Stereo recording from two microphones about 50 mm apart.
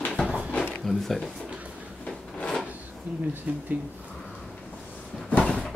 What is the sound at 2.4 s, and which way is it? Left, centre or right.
Drawer open or close, centre.